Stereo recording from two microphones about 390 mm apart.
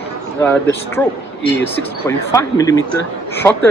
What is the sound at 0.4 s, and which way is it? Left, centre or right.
Speech, centre.